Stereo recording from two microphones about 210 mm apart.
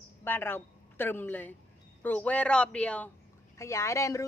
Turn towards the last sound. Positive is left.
turn(degrees=15)  # may be behind; listen again after turning